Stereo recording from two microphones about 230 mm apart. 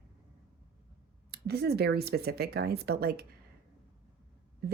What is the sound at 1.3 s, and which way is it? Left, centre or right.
Speech, right.